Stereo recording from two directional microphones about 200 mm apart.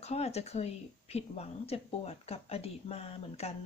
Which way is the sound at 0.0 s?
30° left (ahead or behind).